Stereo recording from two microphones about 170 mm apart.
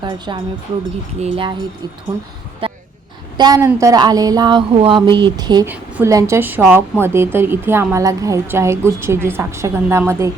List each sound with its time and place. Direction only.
0.0 s speech: 25° right (ahead or behind)
2.1 s speech: 20° right (ahead or behind)
2.6 s a sound: 30° right (ahead or behind)
3.3 s speech: 25° right (ahead or behind)
5.6 s a woman's voice: 10° right (ahead or behind)